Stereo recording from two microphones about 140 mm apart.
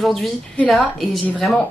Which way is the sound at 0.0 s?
Centre (ahead or behind).